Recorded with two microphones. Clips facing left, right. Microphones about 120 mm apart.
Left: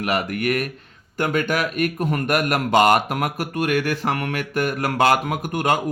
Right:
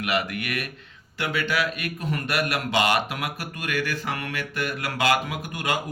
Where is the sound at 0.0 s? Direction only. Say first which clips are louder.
Left 4 dB; 40° left (ahead or behind).